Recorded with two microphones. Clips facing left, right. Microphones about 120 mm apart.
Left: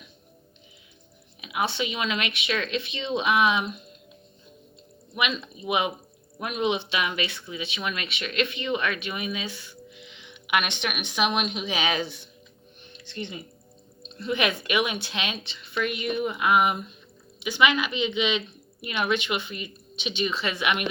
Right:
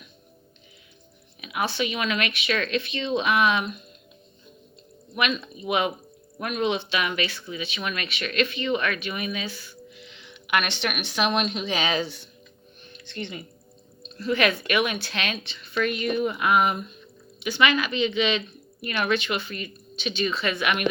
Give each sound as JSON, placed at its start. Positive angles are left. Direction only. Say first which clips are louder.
{"t": 1.4, "sound": "speech", "louder": "right 1 dB", "side_deg": 20}
{"t": 5.1, "sound": "speech", "louder": "right 2 dB", "side_deg": 15}
{"t": 14.2, "sound": "speech", "louder": "right 3 dB", "side_deg": 20}